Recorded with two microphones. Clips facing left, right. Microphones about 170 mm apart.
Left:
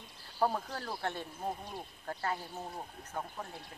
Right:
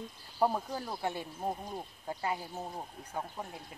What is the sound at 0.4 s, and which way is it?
Speech, 10° right (ahead or behind).